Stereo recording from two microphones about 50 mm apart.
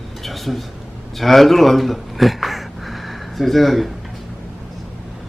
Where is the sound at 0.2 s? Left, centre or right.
Centre.